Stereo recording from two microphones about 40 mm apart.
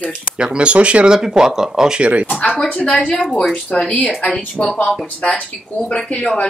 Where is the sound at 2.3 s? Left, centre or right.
Left.